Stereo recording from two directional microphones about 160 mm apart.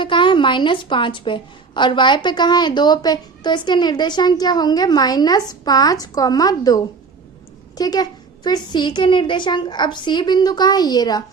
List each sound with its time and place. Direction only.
0.0 s a woman's voice: 30° left (ahead or behind)